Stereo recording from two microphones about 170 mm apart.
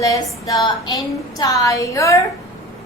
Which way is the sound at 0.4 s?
25° left (ahead or behind).